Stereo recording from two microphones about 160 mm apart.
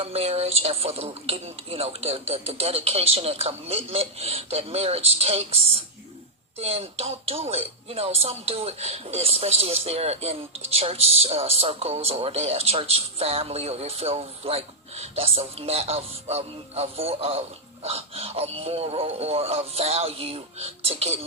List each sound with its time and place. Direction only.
0.0 s speech: 40° right (ahead or behind)